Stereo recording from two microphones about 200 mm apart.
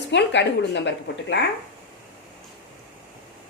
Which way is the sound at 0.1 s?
60° left (ahead or behind).